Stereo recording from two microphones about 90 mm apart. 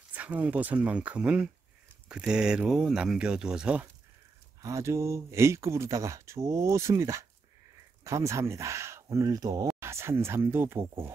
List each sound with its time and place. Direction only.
0.1 s speech: 15° right (ahead or behind)
4.6 s speech: 35° right (ahead or behind)
9.8 s speech: 30° right (ahead or behind)